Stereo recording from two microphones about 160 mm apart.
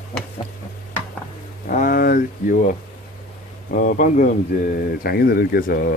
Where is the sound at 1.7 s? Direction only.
55° left (ahead or behind).